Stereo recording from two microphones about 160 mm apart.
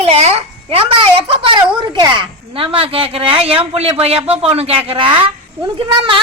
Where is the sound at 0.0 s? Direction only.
40° right (ahead or behind).